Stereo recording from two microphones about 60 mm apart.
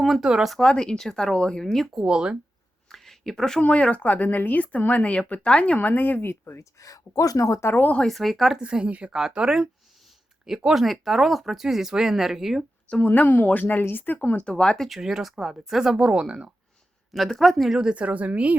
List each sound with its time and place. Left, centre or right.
0.0 s speech: centre
0.5 s speech: centre
2.0 s speech: centre
2.9 s a sound: centre
3.6 s speech: centre
5.9 s speech: left
6.6 s speech: left
8.0 s speech: centre
8.6 s a woman's voice: centre
10.8 s speech: centre
13.0 s speech: left; by 14.8 s centre
14.8 s speech: centre
17.1 s speech: centre
17.7 s a woman's voice: centre